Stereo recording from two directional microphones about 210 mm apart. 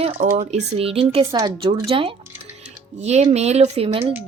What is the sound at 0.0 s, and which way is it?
A woman's voice, 30° right (ahead or behind).